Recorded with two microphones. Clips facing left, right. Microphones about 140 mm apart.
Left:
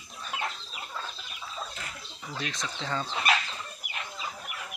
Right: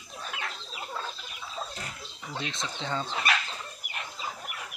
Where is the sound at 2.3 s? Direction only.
25° right (ahead or behind).